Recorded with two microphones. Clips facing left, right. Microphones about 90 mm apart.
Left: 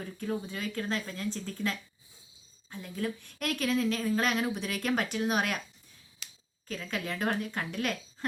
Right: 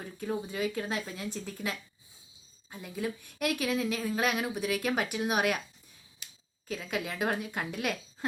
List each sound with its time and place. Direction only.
0.2 s speech: 15° right (ahead or behind)
6.2 s a sound: 90° left
6.7 s speech: 10° right (ahead or behind)